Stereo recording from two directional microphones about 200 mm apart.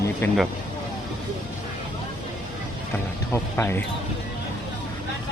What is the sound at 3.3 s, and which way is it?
Speech, 10° left (ahead or behind).